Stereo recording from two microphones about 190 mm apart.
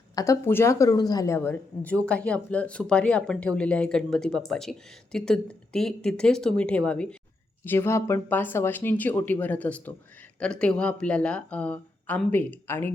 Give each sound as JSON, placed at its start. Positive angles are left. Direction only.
{"t": 0.2, "sound": "speech", "side_deg": 15}